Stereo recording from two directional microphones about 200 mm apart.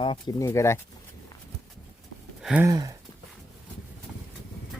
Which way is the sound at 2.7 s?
20° right (ahead or behind).